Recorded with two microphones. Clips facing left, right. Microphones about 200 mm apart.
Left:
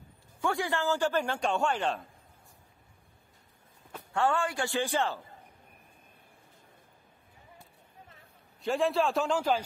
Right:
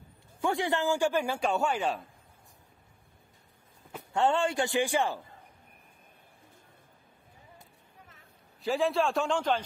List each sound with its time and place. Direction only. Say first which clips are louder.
0.4 s a man's voice: right 2 dB; 20° right (ahead or behind)
3.9 s speech: right 2 dB; 20° right (ahead or behind)
8.6 s a man's voice: even; centre (ahead or behind)